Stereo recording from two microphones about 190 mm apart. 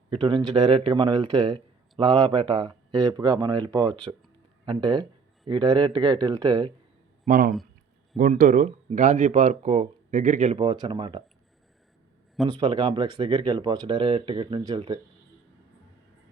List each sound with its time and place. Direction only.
0.1 s speech: 25° right (ahead or behind)
7.3 s speech: 50° right (ahead or behind); by 11.2 s 25° right (ahead or behind)
12.5 s speech: 25° right (ahead or behind)